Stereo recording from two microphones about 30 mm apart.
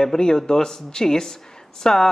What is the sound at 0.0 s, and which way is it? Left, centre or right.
A man's voice, left.